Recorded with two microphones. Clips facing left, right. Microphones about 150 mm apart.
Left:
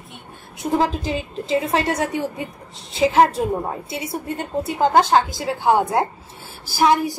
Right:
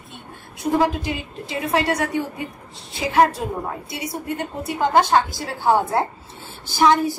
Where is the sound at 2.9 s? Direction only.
25° left (ahead or behind).